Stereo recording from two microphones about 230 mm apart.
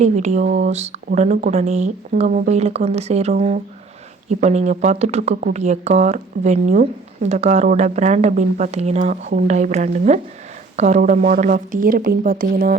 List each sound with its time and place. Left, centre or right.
0.0 s speech: right